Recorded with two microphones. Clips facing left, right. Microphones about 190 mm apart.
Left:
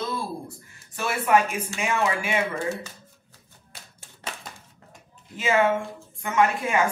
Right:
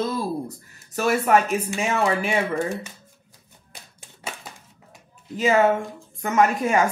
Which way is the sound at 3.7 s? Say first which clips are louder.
Right 2 dB; 15° right (ahead or behind).